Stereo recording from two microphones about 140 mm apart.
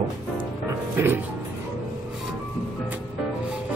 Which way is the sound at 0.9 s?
15° right (ahead or behind).